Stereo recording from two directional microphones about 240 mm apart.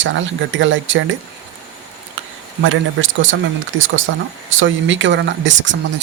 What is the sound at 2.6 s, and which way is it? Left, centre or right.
Speech, right.